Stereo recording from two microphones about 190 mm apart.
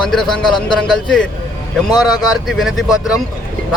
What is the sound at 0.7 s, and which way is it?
Speech, 5° left (ahead or behind).